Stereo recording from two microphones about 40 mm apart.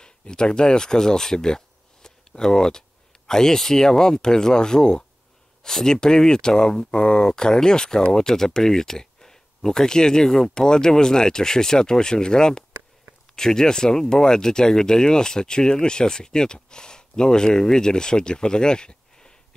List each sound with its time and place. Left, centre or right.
0.0 s speech: left
2.0 s a sound: centre
3.3 s speech: centre